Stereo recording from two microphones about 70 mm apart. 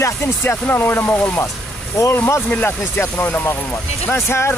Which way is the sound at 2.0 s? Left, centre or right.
Left.